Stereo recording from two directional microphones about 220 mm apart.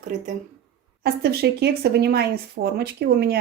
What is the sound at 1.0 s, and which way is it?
Speech, 45° right (ahead or behind).